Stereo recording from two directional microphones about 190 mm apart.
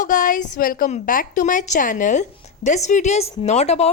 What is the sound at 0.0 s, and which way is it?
A woman's voice, 45° left (ahead or behind).